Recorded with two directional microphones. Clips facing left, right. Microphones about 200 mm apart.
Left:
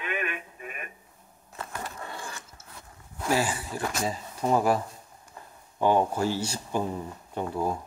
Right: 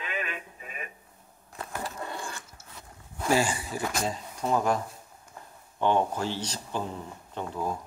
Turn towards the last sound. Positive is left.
turn(degrees=10)  # may be behind; listen again after turning